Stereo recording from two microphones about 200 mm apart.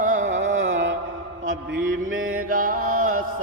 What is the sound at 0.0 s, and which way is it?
Carnatic music, 40° right (ahead or behind).